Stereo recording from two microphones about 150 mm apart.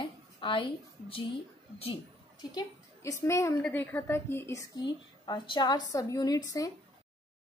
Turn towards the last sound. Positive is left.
turn(degrees=25)  # may be behind; listen again after turning